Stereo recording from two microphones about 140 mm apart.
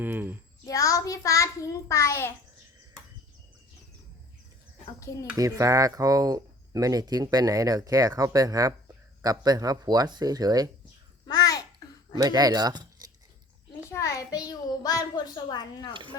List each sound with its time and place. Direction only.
0.0 s a woman's voice: 15° right (ahead or behind)
0.7 s a child's voice: 25° left (ahead or behind)
5.1 s a child's voice: 20° left (ahead or behind)
5.4 s speech: 25° right (ahead or behind)
11.3 s babbling: 25° left (ahead or behind)
12.1 s speech: 25° right (ahead or behind)
13.9 s a child's voice: 25° left (ahead or behind)
15.9 s speech: 35° right (ahead or behind)